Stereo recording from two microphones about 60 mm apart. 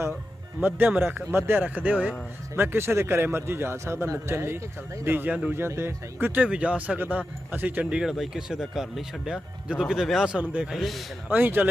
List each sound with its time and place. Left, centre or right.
0.6 s a man's voice: right
2.6 s a man's voice: right
6.4 s speech: right
7.9 s a man's voice: centre
11.3 s a man's voice: right